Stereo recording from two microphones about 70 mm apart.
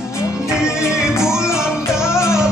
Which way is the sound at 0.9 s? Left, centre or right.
Centre.